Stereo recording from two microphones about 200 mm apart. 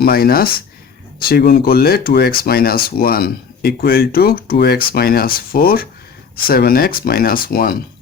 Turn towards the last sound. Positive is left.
turn(degrees=50)  # may be behind; listen again after turning